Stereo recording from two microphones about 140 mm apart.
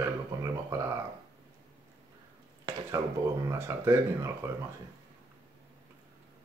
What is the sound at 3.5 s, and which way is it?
Speech, 20° right (ahead or behind).